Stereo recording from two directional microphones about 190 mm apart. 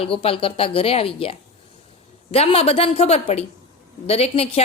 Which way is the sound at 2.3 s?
30° left (ahead or behind).